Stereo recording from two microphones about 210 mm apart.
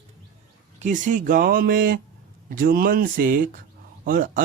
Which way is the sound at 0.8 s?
35° right (ahead or behind).